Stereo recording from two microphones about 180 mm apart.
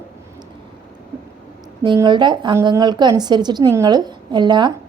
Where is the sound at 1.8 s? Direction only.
25° right (ahead or behind).